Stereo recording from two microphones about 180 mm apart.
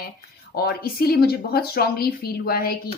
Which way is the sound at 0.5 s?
60° left (ahead or behind).